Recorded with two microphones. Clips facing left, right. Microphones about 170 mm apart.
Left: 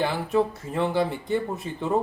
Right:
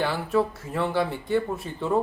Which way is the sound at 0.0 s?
20° left (ahead or behind).